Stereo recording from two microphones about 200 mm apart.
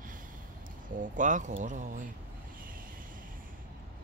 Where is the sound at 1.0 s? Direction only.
40° right (ahead or behind).